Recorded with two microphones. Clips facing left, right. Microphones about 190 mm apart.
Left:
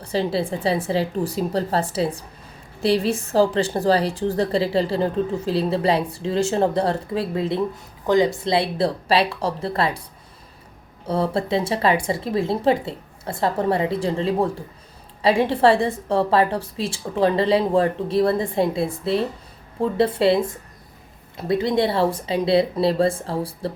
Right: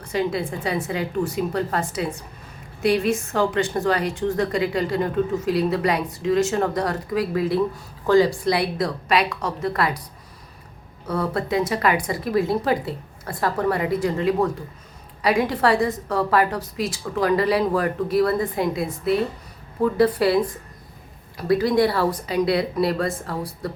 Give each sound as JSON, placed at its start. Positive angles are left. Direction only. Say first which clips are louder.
{"t": 0.0, "sound": "a woman's voice", "louder": "left 1 dB", "side_deg": 30}
{"t": 11.0, "sound": "a woman's voice", "louder": "left 2 dB", "side_deg": 30}